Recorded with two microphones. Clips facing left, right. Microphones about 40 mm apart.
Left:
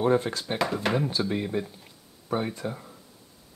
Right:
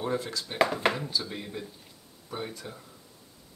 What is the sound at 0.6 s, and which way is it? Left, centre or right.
Speech, right.